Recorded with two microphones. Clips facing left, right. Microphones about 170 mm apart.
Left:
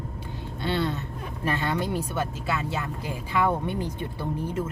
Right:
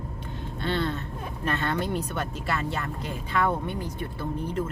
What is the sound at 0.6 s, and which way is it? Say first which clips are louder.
A man's voice: left 1 dB; 10° left (ahead or behind).